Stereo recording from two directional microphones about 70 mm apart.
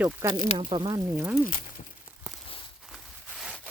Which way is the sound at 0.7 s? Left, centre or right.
Right.